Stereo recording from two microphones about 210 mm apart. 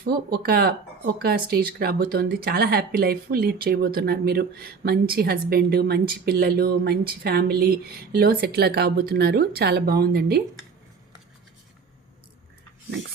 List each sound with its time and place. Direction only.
0.0 s speech: 45° right (ahead or behind)